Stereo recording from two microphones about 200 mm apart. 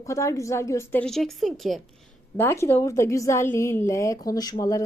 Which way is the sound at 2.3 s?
15° left (ahead or behind).